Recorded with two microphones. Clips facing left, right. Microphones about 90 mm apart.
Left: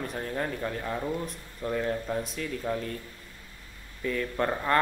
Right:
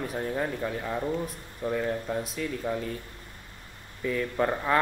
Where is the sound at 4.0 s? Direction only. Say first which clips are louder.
Right 2 dB; 5° right (ahead or behind).